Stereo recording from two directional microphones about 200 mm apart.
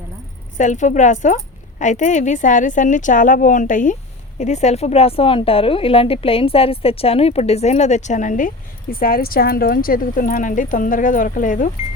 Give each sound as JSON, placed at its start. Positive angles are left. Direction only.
{"t": 0.5, "sound": "a woman's voice", "side_deg": 40}